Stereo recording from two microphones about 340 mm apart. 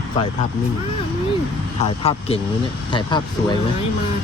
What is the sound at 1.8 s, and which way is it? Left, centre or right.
Speech, centre.